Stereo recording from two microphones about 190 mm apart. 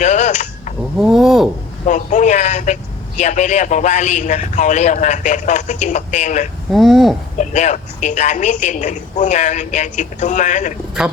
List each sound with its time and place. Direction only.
0.0 s a sound: 40° left (ahead or behind)
0.9 s speech: centre (ahead or behind)
1.9 s a woman's voice: 40° left (ahead or behind)
6.7 s speech: centre (ahead or behind)
7.3 s a woman's voice: 40° left (ahead or behind)